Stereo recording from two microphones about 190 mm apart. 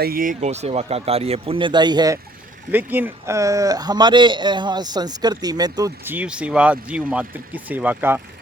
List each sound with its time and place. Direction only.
0.0 s speech: 50° right (ahead or behind); by 2.1 s 20° right (ahead or behind)
2.7 s a man's voice: 10° right (ahead or behind)